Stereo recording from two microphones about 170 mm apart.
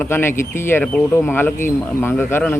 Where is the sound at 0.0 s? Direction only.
15° left (ahead or behind).